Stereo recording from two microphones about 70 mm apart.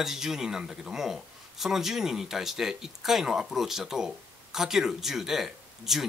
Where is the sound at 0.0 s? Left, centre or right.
Centre.